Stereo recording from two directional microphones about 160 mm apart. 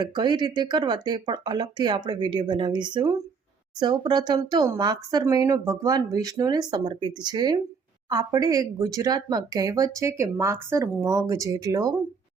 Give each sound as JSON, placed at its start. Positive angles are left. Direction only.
{"t": 0.0, "sound": "speech", "side_deg": -25}